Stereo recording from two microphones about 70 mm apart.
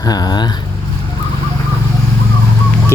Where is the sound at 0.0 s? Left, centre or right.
Left.